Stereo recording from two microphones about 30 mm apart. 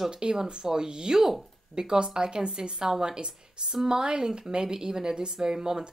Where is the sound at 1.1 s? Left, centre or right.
Centre.